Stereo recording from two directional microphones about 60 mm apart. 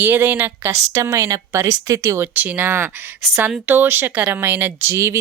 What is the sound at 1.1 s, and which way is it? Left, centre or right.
Speech, right.